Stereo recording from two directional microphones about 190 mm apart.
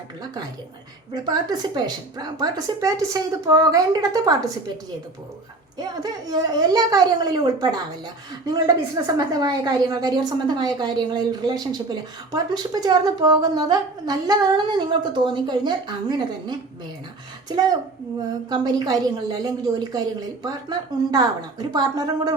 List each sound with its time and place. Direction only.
1.1 s a woman's voice: 20° right (ahead or behind)
5.7 s a woman's voice: 20° right (ahead or behind)